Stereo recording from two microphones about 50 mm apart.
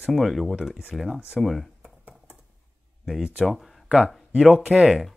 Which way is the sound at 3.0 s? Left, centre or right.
Centre.